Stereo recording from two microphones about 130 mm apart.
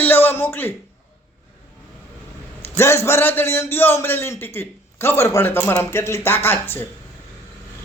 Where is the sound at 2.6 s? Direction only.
20° left (ahead or behind).